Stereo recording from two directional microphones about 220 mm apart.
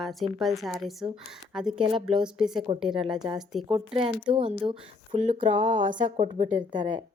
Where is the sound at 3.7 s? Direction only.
25° right (ahead or behind).